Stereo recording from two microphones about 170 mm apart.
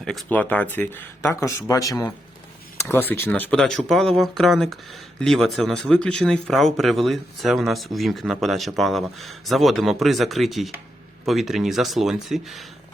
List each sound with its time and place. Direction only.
0.0 s speech: 5° left (ahead or behind)